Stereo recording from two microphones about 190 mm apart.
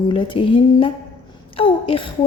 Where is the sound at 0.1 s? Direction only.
25° left (ahead or behind).